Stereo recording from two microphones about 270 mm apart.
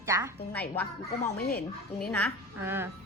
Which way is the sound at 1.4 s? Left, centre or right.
Left.